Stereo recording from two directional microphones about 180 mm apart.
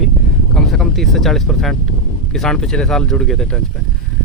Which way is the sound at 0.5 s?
Centre (ahead or behind).